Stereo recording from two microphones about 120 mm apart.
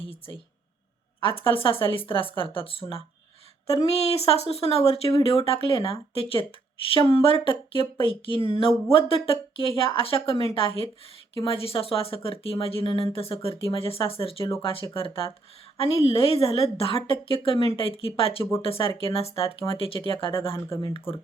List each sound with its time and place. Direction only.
1.2 s speech: 50° left (ahead or behind)
3.8 s speech: 60° left (ahead or behind)